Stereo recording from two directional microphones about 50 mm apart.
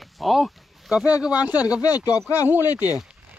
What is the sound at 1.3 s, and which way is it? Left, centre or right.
Speech, right.